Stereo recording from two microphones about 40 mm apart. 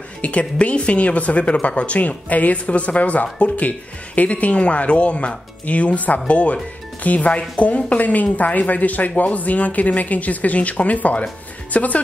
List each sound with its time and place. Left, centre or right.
0.2 s speech: left